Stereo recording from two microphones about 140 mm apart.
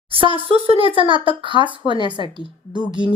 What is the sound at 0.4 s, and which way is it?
A woman's voice, 40° right (ahead or behind).